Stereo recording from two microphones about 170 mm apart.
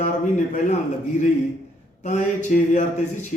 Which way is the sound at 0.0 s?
45° left (ahead or behind).